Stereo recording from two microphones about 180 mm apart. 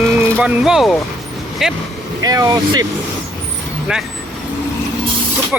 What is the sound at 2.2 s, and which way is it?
Speech, 20° right (ahead or behind).